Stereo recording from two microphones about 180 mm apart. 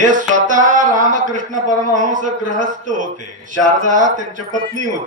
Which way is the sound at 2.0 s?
45° right (ahead or behind).